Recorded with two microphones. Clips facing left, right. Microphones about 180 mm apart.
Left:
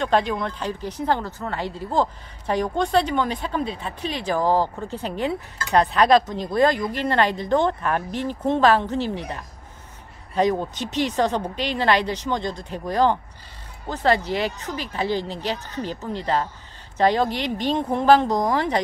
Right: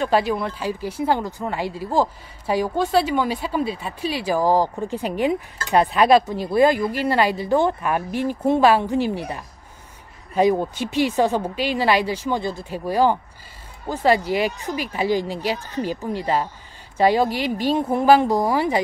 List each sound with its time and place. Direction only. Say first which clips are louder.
0.0 s speech: right 1 dB; 5° right (ahead or behind)